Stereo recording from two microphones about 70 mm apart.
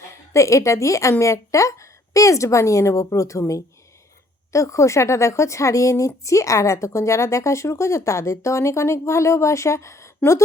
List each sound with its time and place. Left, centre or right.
0.3 s a woman's voice: left